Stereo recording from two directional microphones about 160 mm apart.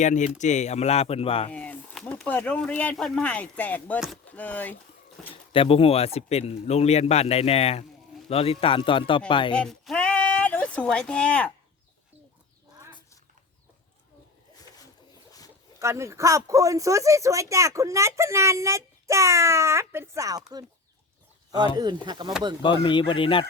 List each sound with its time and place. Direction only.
0.0 s speech: 50° left (ahead or behind)
1.5 s speech: 10° left (ahead or behind)
5.3 s speech: 35° left (ahead or behind)
9.6 s a sound: 5° left (ahead or behind)
15.8 s speech: 15° right (ahead or behind)
22.0 s speech: 30° right (ahead or behind)
22.6 s speech: 30° left (ahead or behind)